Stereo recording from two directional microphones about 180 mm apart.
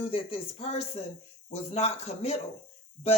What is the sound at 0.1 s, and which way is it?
Speech, 35° left (ahead or behind).